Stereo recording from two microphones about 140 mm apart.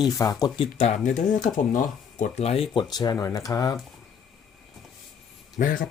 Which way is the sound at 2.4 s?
45° left (ahead or behind).